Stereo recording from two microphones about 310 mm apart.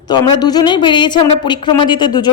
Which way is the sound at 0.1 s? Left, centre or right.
Centre.